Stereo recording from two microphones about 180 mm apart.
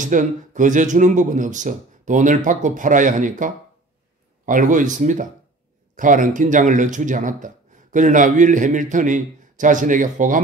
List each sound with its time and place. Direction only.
0.0 s speech: 45° right (ahead or behind)